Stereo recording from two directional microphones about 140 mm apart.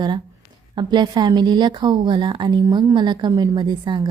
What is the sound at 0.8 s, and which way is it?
A woman's voice, 30° right (ahead or behind).